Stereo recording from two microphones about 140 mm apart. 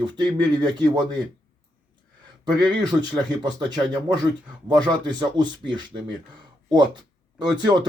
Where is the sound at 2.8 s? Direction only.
30° right (ahead or behind).